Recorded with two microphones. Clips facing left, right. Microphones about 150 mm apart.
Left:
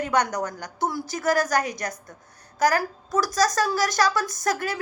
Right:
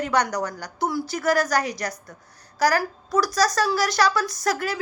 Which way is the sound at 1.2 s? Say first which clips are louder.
Even; 50° left (ahead or behind).